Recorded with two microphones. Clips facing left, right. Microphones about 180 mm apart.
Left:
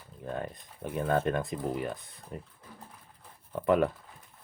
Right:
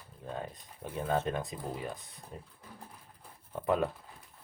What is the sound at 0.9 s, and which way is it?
Speech, 55° left (ahead or behind).